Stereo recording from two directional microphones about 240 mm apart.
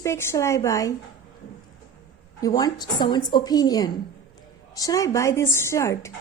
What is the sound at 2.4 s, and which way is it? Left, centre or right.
A woman's voice, centre.